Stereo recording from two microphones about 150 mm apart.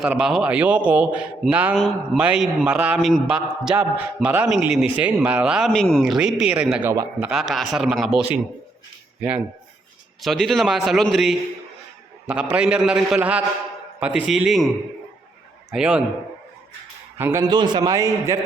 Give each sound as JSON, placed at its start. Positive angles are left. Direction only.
{"t": 0.0, "sound": "a man's voice", "side_deg": -5}
{"t": 10.2, "sound": "a man's voice", "side_deg": 0}
{"t": 15.7, "sound": "a man's voice", "side_deg": -5}
{"t": 17.2, "sound": "a man's voice", "side_deg": -15}
{"t": 17.5, "sound": "a man's voice", "side_deg": -30}